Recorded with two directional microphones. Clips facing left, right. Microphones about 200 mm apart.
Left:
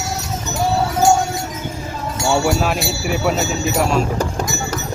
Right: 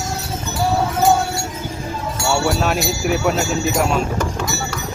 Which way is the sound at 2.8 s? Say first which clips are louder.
Right 1 dB; centre (ahead or behind).